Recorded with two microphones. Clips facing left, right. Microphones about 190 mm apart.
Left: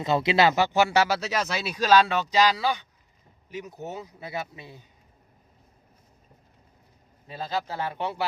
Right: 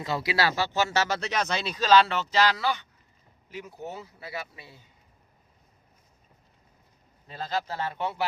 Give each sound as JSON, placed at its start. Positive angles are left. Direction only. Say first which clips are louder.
{"t": 0.0, "sound": "speech", "louder": "left 6 dB", "side_deg": 25}
{"t": 7.3, "sound": "speech", "louder": "left 1 dB", "side_deg": 15}